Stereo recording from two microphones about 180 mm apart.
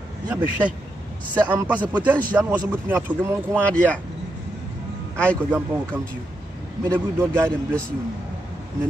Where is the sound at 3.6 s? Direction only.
5° left (ahead or behind).